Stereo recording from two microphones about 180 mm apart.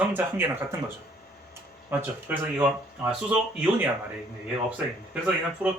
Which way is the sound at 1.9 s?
10° right (ahead or behind).